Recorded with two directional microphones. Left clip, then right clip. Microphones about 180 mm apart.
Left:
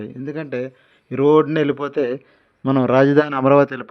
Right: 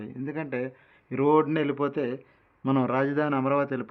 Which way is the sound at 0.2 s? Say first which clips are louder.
Left 5 dB; 30° left (ahead or behind).